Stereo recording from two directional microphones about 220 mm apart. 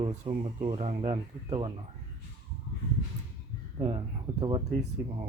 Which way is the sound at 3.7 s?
25° right (ahead or behind).